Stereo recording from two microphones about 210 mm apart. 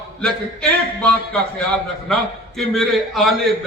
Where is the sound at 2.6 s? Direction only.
Centre (ahead or behind).